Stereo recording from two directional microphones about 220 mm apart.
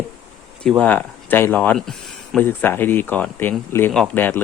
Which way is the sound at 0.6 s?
5° left (ahead or behind).